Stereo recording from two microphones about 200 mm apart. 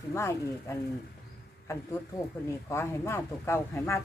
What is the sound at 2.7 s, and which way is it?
Speech, 10° left (ahead or behind).